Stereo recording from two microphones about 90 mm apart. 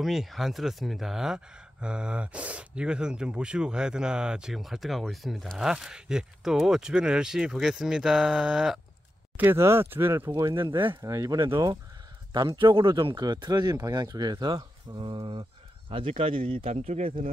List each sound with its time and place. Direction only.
0.0 s speech: 5° right (ahead or behind)
9.4 s speech: 25° right (ahead or behind)
10.7 s speech: 70° right (ahead or behind)
11.0 s speech: 35° right (ahead or behind)
12.3 s speech: 55° right (ahead or behind)
15.9 s speech: 85° right